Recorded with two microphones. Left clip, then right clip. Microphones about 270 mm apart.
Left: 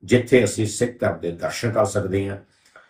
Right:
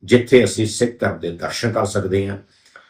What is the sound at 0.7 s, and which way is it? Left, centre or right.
Speech, centre.